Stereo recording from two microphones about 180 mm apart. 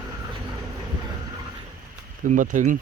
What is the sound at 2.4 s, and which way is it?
Speech, 45° right (ahead or behind).